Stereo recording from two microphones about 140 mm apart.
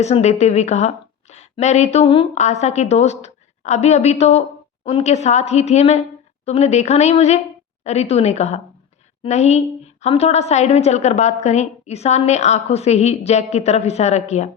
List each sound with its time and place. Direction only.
0.0 s a woman's voice: 50° left (ahead or behind)